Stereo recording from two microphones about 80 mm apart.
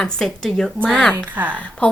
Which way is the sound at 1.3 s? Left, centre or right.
Right.